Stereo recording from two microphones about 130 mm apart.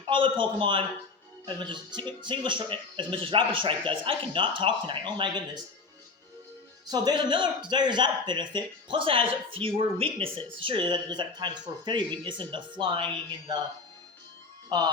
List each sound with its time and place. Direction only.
0.1 s a man's voice: 40° right (ahead or behind)
6.8 s a man's voice: 30° right (ahead or behind)
14.7 s a man's voice: 30° right (ahead or behind)